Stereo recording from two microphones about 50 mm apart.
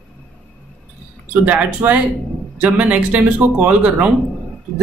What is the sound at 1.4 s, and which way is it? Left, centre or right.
Speech, right.